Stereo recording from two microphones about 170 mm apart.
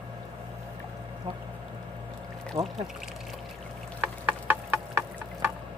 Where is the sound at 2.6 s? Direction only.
25° right (ahead or behind).